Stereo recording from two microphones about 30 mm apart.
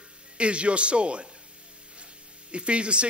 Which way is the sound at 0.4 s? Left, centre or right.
Right.